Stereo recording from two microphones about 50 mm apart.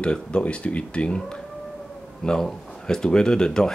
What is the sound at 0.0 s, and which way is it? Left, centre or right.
Speech, left.